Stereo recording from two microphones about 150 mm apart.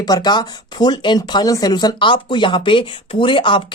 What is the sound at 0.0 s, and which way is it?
Speech, 25° left (ahead or behind).